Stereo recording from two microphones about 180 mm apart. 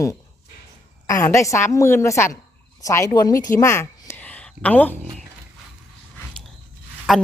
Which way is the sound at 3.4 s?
15° left (ahead or behind).